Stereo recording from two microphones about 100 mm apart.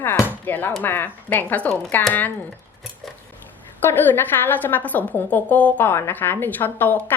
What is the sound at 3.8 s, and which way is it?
A woman's voice, 20° left (ahead or behind).